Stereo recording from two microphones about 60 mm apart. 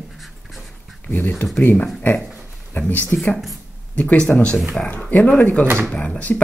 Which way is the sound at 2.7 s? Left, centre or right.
Left.